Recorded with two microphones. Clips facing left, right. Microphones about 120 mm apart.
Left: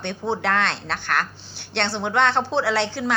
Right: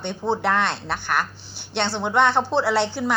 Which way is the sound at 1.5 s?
55° left (ahead or behind).